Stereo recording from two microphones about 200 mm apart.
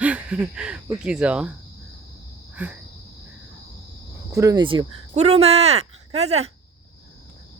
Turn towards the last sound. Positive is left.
turn(degrees=-30)  # may be behind; listen again after turning